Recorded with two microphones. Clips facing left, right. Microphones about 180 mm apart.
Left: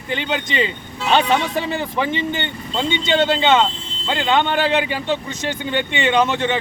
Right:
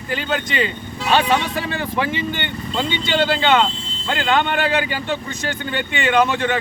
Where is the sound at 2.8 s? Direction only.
20° left (ahead or behind).